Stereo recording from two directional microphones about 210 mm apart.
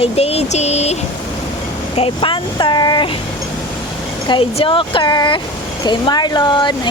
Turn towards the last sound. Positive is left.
turn(degrees=20)  # may be behind; listen again after turning